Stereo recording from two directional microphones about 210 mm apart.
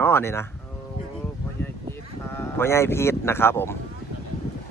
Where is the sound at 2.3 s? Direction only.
10° left (ahead or behind).